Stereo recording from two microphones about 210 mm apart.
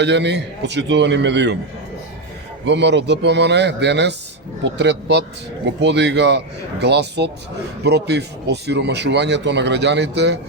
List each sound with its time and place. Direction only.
0.0 s speech: 55° right (ahead or behind)
2.6 s speech: 55° right (ahead or behind)